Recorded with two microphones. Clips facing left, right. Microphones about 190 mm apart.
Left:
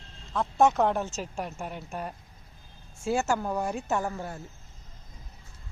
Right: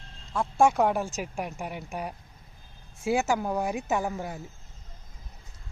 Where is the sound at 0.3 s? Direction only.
10° right (ahead or behind).